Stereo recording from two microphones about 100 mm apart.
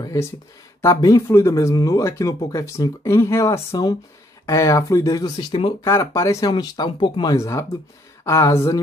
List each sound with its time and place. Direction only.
0.0 s speech: 35° left (ahead or behind)
5.5 s speech: 55° left (ahead or behind)
5.9 s speech: 30° left (ahead or behind)
6.5 s speech: 45° left (ahead or behind)
7.3 s speech: 30° left (ahead or behind)